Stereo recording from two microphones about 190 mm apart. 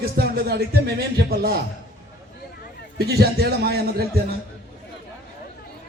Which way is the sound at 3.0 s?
55° right (ahead or behind).